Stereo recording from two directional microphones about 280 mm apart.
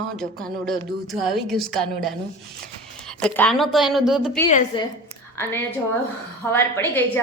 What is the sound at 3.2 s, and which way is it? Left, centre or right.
Speech, centre.